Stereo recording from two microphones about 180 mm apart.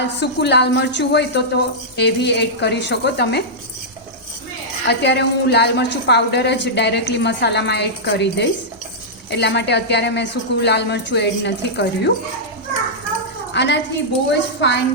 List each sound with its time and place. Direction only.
0.2 s a woman's voice: 70° left (ahead or behind)
4.9 s a woman's voice: 70° left (ahead or behind)
13.5 s a woman's voice: 70° left (ahead or behind)